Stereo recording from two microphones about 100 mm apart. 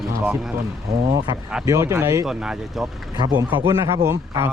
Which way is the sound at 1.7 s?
30° right (ahead or behind).